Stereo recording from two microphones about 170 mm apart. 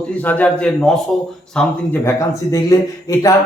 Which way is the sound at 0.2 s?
10° left (ahead or behind).